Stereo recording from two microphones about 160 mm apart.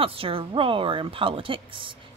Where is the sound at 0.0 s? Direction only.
35° right (ahead or behind).